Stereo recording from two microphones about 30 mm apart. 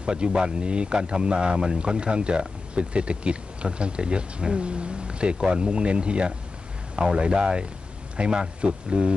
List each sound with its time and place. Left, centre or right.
0.0 s speech: right